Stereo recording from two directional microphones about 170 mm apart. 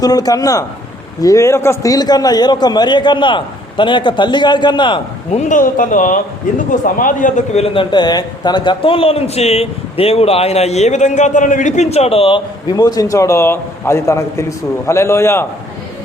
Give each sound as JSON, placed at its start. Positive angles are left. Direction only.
{"t": 0.0, "sound": "a man's voice", "side_deg": 20}
{"t": 5.3, "sound": "a man's voice", "side_deg": 45}